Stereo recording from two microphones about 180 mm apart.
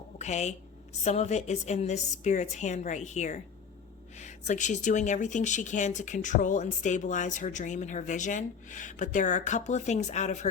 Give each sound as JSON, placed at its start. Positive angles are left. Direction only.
{"t": 0.2, "sound": "a woman's voice", "side_deg": 40}